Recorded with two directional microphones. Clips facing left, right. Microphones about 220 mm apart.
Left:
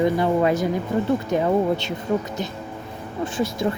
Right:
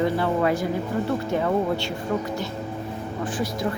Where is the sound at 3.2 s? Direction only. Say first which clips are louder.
Left 4 dB; 25° left (ahead or behind).